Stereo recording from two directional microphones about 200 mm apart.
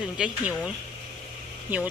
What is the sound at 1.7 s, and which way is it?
Speech, 10° right (ahead or behind).